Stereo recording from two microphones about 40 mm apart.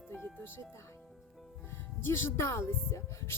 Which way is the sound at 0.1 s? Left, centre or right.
Left.